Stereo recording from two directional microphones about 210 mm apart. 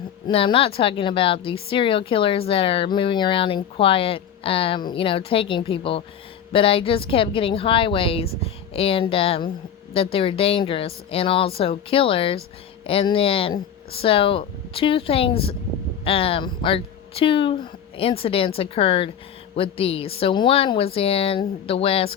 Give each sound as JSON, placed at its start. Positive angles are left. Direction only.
{"t": 0.3, "sound": "speech", "side_deg": 25}